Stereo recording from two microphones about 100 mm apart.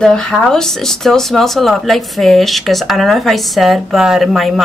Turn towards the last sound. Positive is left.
turn(degrees=0)  # may be behind; listen again after turning